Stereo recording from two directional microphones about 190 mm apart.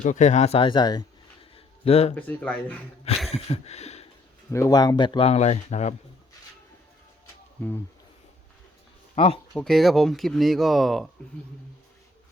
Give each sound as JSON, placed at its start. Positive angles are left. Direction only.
{"t": 0.0, "sound": "a man's voice", "side_deg": 40}
{"t": 2.1, "sound": "speech", "side_deg": 5}
{"t": 3.3, "sound": "a sound", "side_deg": 35}
{"t": 4.5, "sound": "speech", "side_deg": 20}
{"t": 7.6, "sound": "speech", "side_deg": 10}
{"t": 9.1, "sound": "speech", "side_deg": 30}
{"t": 9.6, "sound": "speech", "side_deg": 0}